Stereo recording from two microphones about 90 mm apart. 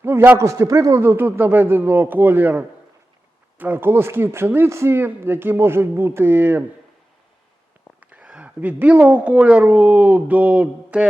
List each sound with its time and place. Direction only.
0.0 s a man's voice: 25° right (ahead or behind)
1.0 s speech: 20° right (ahead or behind)
8.1 s a woman's voice: 10° right (ahead or behind)